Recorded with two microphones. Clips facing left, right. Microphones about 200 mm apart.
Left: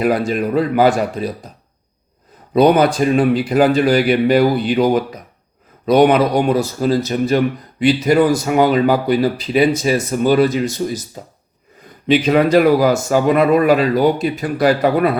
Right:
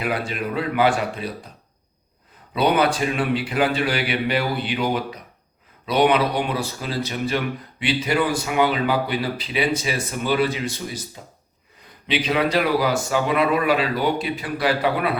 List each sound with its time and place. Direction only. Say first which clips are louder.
0.0 s speech: left 9 dB; 45° left (ahead or behind)
2.5 s speech: left 7 dB; 45° left (ahead or behind)
12.0 s speech: left 8 dB; 45° left (ahead or behind)